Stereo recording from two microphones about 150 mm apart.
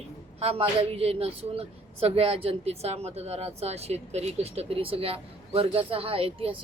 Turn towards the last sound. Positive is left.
turn(degrees=-40)  # may be behind; listen again after turning